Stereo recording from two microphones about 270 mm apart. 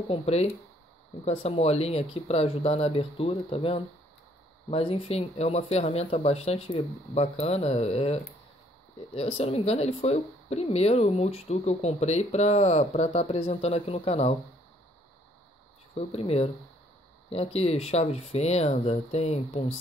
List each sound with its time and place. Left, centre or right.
0.1 s speech: left
16.1 s speech: left